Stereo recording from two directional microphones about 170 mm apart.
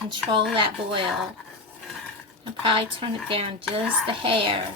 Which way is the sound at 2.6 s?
30° right (ahead or behind).